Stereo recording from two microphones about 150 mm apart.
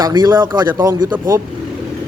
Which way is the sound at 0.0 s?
25° right (ahead or behind).